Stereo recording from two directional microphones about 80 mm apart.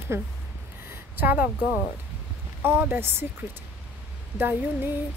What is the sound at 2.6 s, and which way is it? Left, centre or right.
Speech, right.